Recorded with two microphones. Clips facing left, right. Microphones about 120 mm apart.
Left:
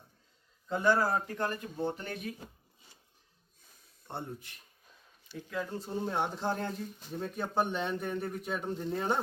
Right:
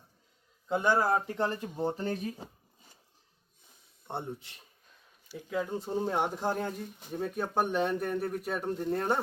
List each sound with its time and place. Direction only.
0.7 s speech: 15° right (ahead or behind)
1.9 s speech: 35° right (ahead or behind)
3.6 s a sound: 20° right (ahead or behind)
5.3 s speech: 15° right (ahead or behind)